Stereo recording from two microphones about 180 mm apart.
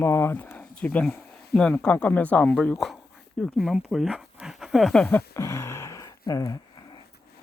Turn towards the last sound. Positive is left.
turn(degrees=20)  # may be behind; listen again after turning